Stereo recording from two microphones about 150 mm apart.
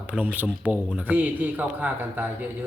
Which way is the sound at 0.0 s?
10° right (ahead or behind).